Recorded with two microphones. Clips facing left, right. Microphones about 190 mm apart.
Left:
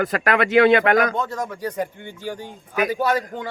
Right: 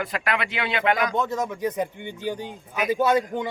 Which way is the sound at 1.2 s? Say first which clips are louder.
Right 1 dB; 20° right (ahead or behind).